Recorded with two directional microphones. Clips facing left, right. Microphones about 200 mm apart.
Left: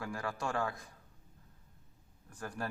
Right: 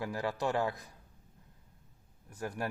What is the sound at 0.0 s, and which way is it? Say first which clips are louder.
Speech: right 5 dB; 20° right (ahead or behind).